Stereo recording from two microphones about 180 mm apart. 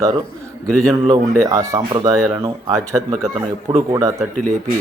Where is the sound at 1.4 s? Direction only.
20° right (ahead or behind).